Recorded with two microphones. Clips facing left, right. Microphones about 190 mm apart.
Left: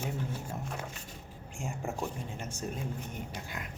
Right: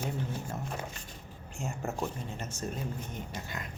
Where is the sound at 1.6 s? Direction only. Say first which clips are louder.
Right 1 dB; 15° left (ahead or behind).